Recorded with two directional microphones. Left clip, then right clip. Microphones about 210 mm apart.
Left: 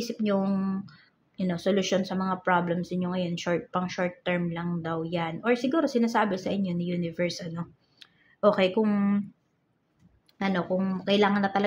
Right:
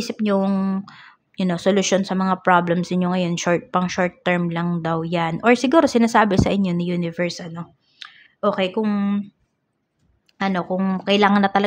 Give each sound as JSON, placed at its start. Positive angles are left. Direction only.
{"t": 0.0, "sound": "speech", "side_deg": -20}
{"t": 10.3, "sound": "speech", "side_deg": -20}